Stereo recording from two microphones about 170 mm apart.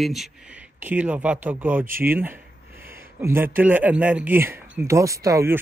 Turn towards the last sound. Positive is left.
turn(degrees=-15)  # may be behind; listen again after turning